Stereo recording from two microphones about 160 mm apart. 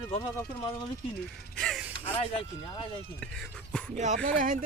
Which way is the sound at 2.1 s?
35° left (ahead or behind).